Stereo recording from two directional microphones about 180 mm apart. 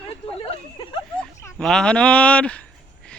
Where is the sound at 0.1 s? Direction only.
30° left (ahead or behind).